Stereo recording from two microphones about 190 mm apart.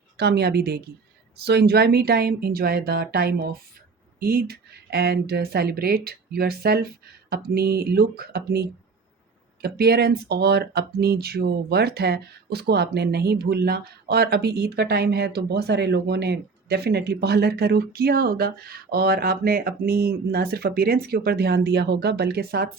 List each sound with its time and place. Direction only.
0.2 s speech: 60° right (ahead or behind)